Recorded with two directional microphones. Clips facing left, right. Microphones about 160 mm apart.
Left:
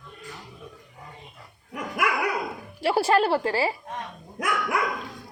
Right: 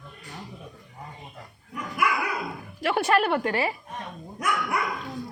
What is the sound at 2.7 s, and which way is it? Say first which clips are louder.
Speech: left 2 dB; 30° left (ahead or behind).